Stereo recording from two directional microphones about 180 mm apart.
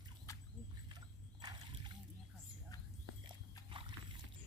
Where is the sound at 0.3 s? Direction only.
20° left (ahead or behind).